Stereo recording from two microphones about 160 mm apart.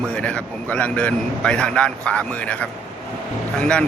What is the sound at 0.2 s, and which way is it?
A man's voice, 10° left (ahead or behind).